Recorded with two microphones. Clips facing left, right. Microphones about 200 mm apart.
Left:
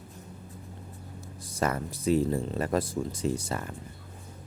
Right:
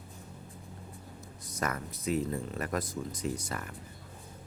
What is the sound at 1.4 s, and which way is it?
Speech, 30° left (ahead or behind).